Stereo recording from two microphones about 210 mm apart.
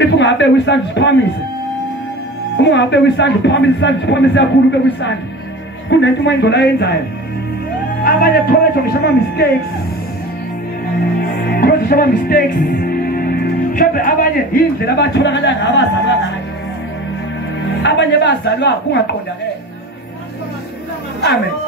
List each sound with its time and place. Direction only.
0.0 s a man's voice: 55° left (ahead or behind)
2.5 s a man's voice: 55° left (ahead or behind)
8.0 s a man's voice: 45° left (ahead or behind)
11.5 s music: 45° left (ahead or behind)
17.8 s a man's voice: 55° left (ahead or behind)